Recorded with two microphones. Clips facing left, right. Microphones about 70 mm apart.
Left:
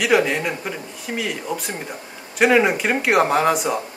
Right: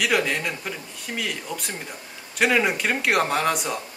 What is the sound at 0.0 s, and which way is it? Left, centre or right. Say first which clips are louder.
Speech: left 5 dB; centre.